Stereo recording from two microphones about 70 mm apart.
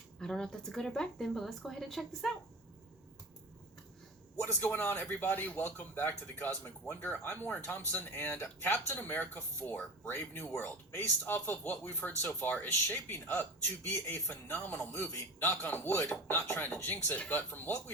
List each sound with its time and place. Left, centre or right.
0.2 s speech: centre
4.6 s speech: left